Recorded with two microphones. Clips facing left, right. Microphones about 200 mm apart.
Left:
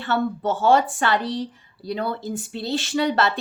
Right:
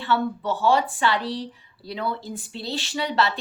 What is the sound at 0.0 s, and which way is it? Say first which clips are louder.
Speech: left 1 dB; 50° left (ahead or behind).